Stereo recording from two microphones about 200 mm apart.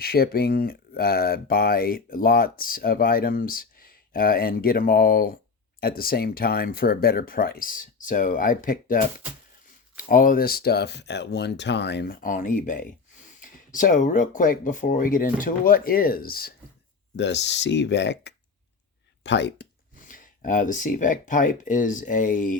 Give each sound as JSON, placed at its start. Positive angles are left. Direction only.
{"t": 0.0, "sound": "speech", "side_deg": 50}
{"t": 17.2, "sound": "speech", "side_deg": 60}
{"t": 20.1, "sound": "speech", "side_deg": 40}